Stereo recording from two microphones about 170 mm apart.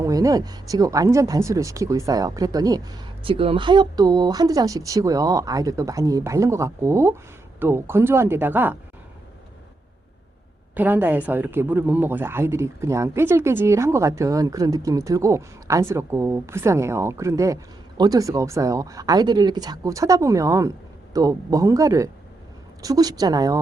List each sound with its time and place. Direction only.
0.0 s speech: 20° right (ahead or behind)
10.8 s speech: 10° right (ahead or behind)